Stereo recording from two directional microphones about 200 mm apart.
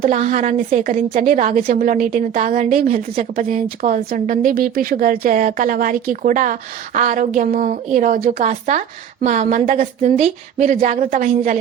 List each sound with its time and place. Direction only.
0.0 s a woman's voice: 40° right (ahead or behind)